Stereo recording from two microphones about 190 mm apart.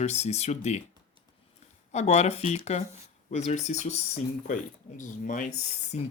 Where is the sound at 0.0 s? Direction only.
35° left (ahead or behind).